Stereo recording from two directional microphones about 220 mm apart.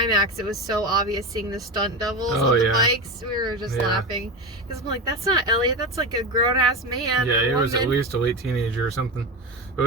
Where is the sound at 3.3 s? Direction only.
20° right (ahead or behind).